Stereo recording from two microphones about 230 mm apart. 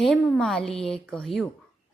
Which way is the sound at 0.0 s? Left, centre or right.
Centre.